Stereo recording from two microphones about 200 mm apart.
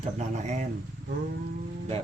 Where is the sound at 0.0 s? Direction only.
35° right (ahead or behind).